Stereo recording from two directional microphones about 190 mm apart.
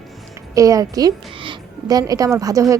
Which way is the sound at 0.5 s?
20° right (ahead or behind).